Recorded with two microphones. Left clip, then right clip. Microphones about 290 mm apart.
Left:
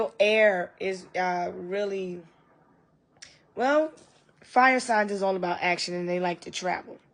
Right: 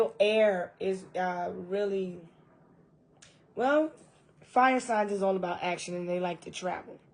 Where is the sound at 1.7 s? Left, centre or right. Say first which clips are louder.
Left 1 dB; left.